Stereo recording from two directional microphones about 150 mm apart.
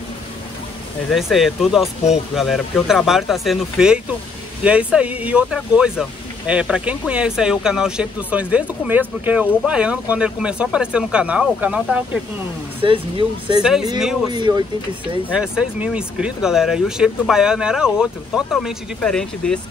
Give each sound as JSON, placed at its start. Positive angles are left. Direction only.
{"t": 1.1, "sound": "speech", "side_deg": 0}
{"t": 12.8, "sound": "speech", "side_deg": -35}
{"t": 13.6, "sound": "speech", "side_deg": -5}
{"t": 14.3, "sound": "speech", "side_deg": -30}
{"t": 15.3, "sound": "speech", "side_deg": -5}